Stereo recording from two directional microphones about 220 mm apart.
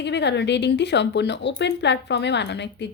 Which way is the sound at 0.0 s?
50° left (ahead or behind).